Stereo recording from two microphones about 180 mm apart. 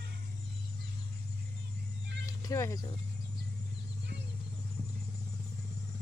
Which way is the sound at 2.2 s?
20° left (ahead or behind).